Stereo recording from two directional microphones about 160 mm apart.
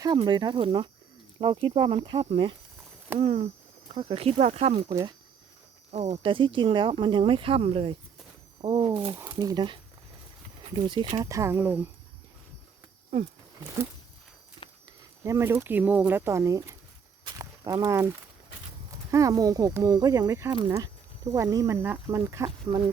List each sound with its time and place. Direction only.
0.2 s speech: 30° right (ahead or behind)
3.2 s speech: 50° right (ahead or behind)
3.9 s speech: 35° right (ahead or behind); by 11.9 s 15° right (ahead or behind)
13.1 s speech: 40° right (ahead or behind)
15.2 s speech: 15° right (ahead or behind)
17.2 s a sound: 20° right (ahead or behind)
18.9 s speech: 20° right (ahead or behind)